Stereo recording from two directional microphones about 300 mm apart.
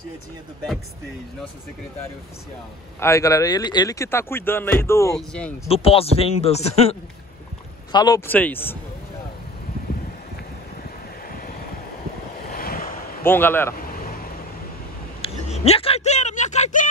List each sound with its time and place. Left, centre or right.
3.0 s speech: centre
5.7 s speech: centre
11.2 s vehicle: left
13.2 s speech: centre
13.9 s a sound: left
15.2 s speech: centre